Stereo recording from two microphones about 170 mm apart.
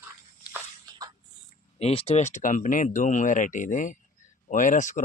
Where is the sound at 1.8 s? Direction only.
35° left (ahead or behind).